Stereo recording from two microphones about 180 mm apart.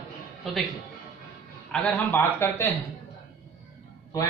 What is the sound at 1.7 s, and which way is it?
Speech, 10° left (ahead or behind).